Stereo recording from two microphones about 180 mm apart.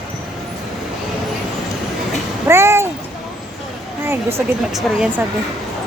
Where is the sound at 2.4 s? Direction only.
15° right (ahead or behind).